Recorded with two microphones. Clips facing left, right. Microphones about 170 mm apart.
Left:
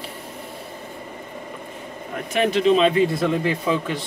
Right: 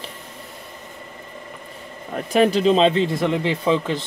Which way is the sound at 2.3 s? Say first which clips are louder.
Right 2 dB; 35° right (ahead or behind).